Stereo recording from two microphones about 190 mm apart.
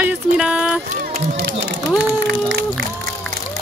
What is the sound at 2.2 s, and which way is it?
Speech, 65° right (ahead or behind).